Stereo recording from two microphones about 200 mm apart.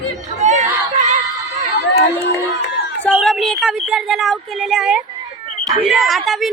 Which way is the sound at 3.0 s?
5° left (ahead or behind).